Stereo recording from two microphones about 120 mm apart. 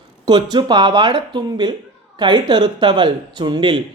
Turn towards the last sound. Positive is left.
turn(degrees=-40)  # may be behind; listen again after turning